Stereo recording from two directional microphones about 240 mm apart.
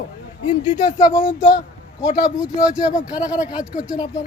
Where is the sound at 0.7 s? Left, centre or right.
Left.